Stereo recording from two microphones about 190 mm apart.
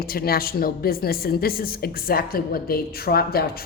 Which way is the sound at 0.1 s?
50° left (ahead or behind).